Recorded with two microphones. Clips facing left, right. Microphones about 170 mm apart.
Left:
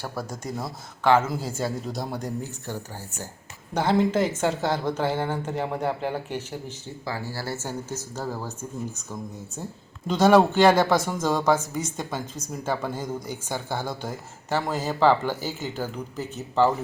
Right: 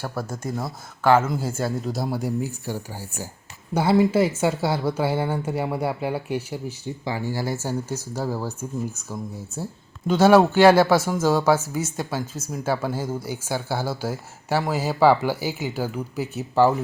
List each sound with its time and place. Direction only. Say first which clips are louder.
0.0 s speech: right 3 dB; centre (ahead or behind)